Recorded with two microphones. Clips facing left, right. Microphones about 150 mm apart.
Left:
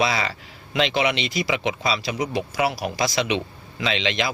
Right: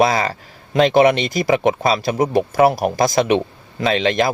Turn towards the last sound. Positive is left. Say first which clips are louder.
# right 7 dB
turn(degrees=-45)  # may be behind; listen again after turning